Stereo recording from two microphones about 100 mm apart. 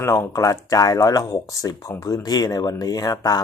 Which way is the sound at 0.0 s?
30° left (ahead or behind).